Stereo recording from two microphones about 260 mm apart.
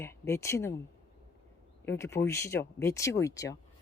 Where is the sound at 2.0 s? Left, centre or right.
Centre.